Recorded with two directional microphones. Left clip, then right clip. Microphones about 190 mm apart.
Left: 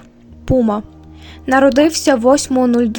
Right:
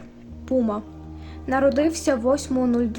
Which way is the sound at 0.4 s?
45° left (ahead or behind).